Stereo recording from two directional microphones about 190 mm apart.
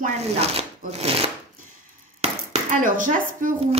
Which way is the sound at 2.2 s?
45° right (ahead or behind).